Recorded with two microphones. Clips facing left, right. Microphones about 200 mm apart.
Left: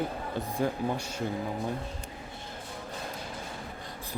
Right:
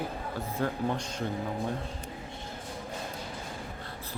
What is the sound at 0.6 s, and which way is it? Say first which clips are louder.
Speech: left 1 dB; 10° left (ahead or behind).